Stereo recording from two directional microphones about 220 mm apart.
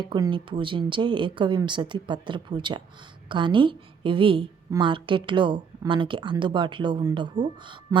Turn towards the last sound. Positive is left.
turn(degrees=-20)  # may be behind; listen again after turning